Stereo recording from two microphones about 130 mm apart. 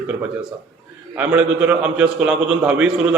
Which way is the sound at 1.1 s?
10° right (ahead or behind).